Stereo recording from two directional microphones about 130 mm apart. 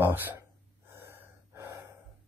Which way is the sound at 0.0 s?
15° right (ahead or behind).